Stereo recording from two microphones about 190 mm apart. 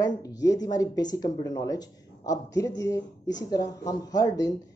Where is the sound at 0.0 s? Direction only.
20° left (ahead or behind).